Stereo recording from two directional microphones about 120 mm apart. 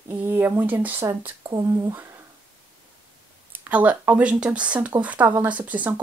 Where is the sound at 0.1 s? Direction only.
15° right (ahead or behind).